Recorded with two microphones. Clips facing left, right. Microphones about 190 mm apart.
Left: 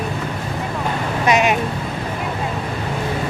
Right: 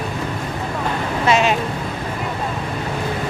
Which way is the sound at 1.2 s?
15° left (ahead or behind).